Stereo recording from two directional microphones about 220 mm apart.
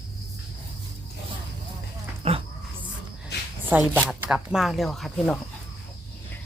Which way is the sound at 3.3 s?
50° left (ahead or behind).